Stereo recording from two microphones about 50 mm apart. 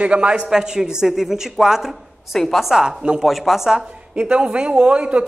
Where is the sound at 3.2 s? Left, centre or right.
Centre.